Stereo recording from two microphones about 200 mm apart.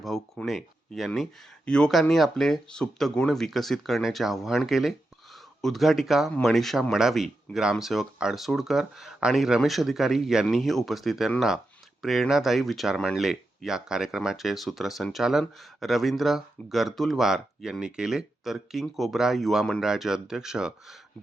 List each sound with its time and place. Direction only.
0.0 s speech: centre (ahead or behind)